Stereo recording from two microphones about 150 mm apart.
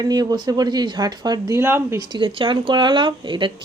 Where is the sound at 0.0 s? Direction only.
25° right (ahead or behind).